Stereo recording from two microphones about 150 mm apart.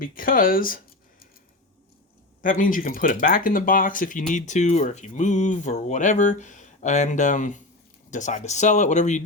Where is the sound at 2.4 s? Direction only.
60° left (ahead or behind).